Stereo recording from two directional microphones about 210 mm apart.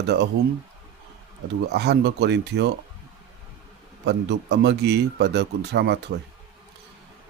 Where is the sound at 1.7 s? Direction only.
50° right (ahead or behind).